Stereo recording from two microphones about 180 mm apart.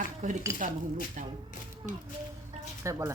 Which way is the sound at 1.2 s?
45° right (ahead or behind).